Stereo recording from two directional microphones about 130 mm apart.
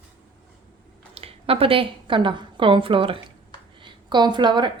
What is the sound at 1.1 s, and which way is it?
A woman's voice, 45° right (ahead or behind).